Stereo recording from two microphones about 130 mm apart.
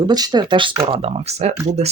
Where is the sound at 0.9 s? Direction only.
50° right (ahead or behind).